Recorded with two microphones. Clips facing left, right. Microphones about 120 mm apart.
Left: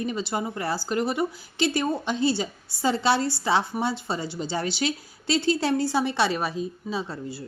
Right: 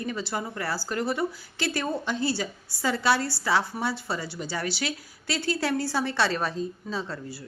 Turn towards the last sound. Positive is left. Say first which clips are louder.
# left 2 dB
turn(degrees=20)  # may be behind; listen again after turning